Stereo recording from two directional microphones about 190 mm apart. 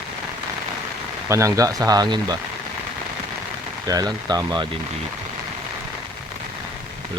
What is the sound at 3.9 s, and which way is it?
Speech, 20° right (ahead or behind).